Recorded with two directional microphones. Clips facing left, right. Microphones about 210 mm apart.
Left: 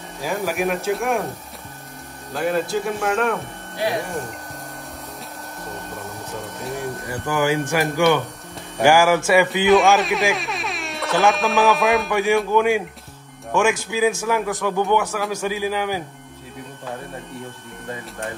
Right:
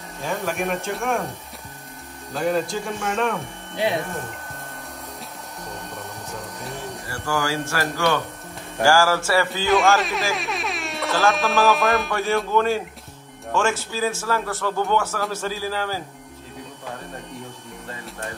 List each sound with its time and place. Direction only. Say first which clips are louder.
0.2 s speech: left 3 dB; 5° left (ahead or behind)
2.3 s speech: left 1 dB; 5° left (ahead or behind)
7.1 s a man's voice: left 4 dB; 20° left (ahead or behind)
9.7 s speech: left 3 dB; centre (ahead or behind)
12.1 s a man's voice: left 4 dB; 15° left (ahead or behind)